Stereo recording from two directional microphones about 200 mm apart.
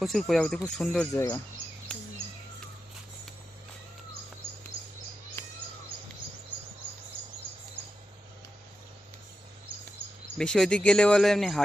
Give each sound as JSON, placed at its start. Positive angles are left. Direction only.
{"t": 0.0, "sound": "speech", "side_deg": 0}
{"t": 1.1, "sound": "speech", "side_deg": 15}
{"t": 5.4, "sound": "bird", "side_deg": 10}
{"t": 10.3, "sound": "speech", "side_deg": 5}